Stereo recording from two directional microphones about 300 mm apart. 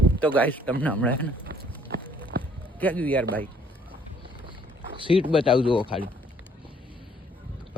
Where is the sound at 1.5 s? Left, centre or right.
Right.